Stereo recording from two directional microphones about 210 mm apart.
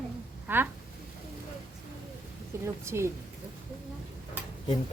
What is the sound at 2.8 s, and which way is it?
Speech, 10° right (ahead or behind).